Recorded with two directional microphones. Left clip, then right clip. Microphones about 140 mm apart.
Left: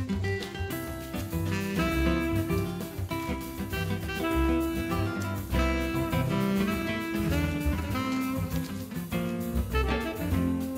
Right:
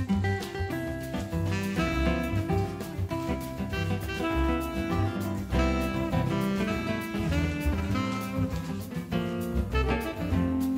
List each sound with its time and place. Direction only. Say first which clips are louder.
1.5 s music: left 1 dB; centre (ahead or behind)
4.2 s music: left 2 dB; centre (ahead or behind)